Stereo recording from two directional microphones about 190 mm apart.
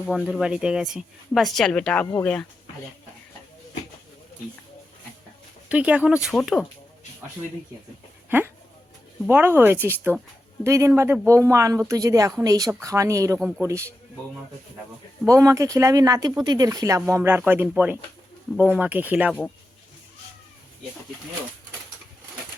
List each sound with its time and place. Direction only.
0.1 s speech: 5° right (ahead or behind)
5.6 s speech: 5° right (ahead or behind)
8.3 s speech: 10° right (ahead or behind)
15.3 s speech: 15° right (ahead or behind)